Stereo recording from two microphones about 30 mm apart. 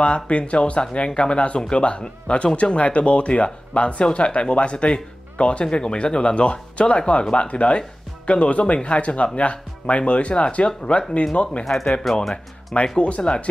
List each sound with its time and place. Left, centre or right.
0.0 s speech: left
10.9 s speech: left
11.6 s speech: centre
12.8 s speech: left